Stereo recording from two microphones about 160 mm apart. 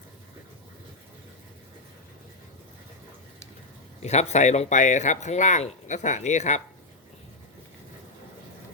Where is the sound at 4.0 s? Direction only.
45° left (ahead or behind).